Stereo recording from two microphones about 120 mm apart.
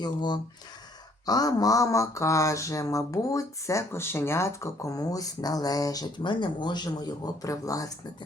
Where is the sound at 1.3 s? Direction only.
30° left (ahead or behind).